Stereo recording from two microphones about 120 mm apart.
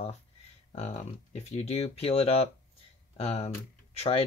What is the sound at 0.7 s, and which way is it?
Speech, 70° left (ahead or behind).